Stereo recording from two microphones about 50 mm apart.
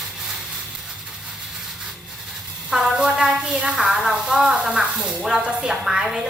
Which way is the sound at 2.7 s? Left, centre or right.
Centre.